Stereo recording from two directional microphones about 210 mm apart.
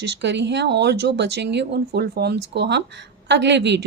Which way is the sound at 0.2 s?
55° right (ahead or behind).